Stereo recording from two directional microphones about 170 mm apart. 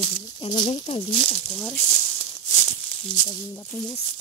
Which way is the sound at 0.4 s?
25° left (ahead or behind).